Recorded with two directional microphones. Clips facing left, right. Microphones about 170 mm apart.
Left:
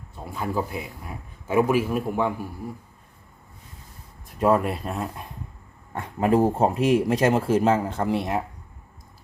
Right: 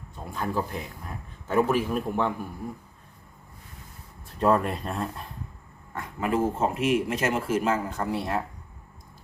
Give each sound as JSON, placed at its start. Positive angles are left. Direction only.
{"t": 0.3, "sound": "a man's voice", "side_deg": 5}
{"t": 4.3, "sound": "speech", "side_deg": 10}
{"t": 5.9, "sound": "speech", "side_deg": 30}